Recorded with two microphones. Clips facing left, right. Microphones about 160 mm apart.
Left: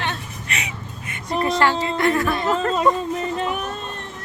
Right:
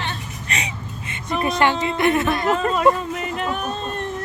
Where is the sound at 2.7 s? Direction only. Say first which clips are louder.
Right 1 dB; 30° left (ahead or behind).